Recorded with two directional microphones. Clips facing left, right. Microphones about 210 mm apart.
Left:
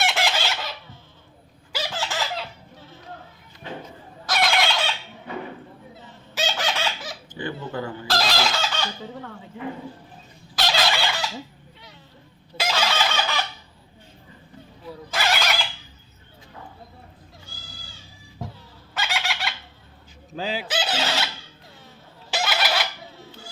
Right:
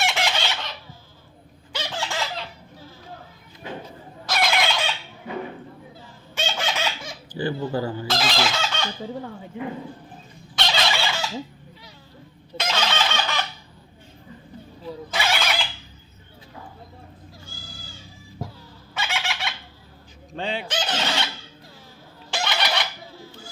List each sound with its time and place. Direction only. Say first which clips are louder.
0.0 s chicken: left 1 dB; centre (ahead or behind)
1.7 s chicken: even; 5° left (ahead or behind)
4.3 s fowl: even; centre (ahead or behind)
6.0 s honk: left 2 dB; 5° left (ahead or behind)
7.3 s dog: right 6 dB; 35° right (ahead or behind)
8.0 s chicken: even; centre (ahead or behind)
10.5 s chicken: left 1 dB; centre (ahead or behind)
12.5 s chicken: left 1 dB; centre (ahead or behind)
14.8 s neigh: even; centre (ahead or behind)
18.9 s fowl: even; centre (ahead or behind)
22.3 s a sound: left 1 dB; 5° left (ahead or behind)